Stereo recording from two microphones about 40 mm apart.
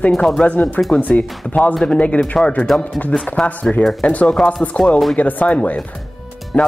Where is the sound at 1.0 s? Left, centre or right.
Left.